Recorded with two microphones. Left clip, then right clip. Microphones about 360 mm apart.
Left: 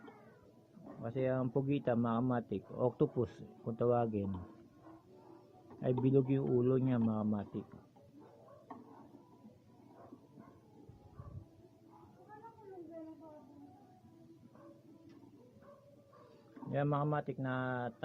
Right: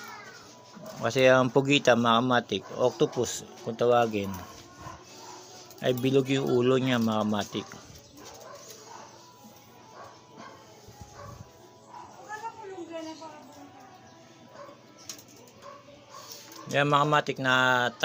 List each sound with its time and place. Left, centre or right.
1.0 s speech: left
5.8 s speech: left
16.7 s speech: left